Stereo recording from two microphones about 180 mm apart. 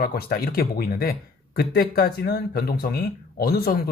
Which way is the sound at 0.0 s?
55° left (ahead or behind).